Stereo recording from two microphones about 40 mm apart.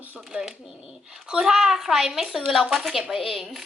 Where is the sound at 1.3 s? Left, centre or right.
Centre.